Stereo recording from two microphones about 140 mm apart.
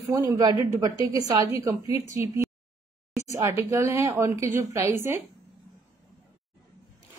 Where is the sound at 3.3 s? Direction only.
20° right (ahead or behind).